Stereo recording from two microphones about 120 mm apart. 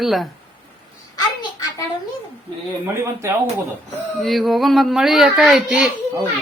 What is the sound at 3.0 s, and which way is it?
Speech, 25° right (ahead or behind).